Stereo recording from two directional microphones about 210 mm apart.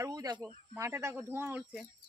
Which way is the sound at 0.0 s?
15° right (ahead or behind).